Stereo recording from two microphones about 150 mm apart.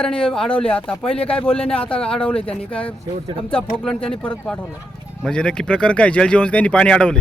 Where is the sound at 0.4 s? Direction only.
40° left (ahead or behind).